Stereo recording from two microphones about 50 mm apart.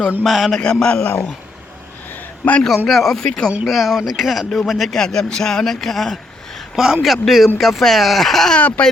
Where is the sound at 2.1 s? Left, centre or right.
Left.